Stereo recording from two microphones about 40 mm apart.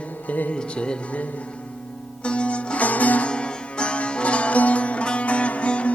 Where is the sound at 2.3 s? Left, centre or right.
Left.